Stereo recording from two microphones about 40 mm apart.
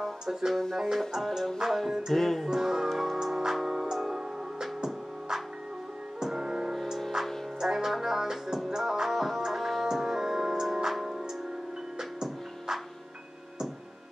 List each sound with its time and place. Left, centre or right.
0.0 s music: centre
1.2 s music: centre
1.9 s music: centre
2.1 s music: centre
2.4 s music: centre
2.9 s music: centre
6.7 s music: centre
7.6 s music: centre